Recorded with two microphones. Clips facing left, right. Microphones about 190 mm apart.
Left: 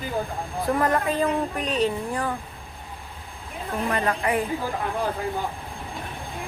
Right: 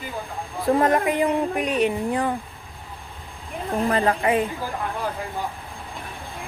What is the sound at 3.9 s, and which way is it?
Speech, 30° right (ahead or behind).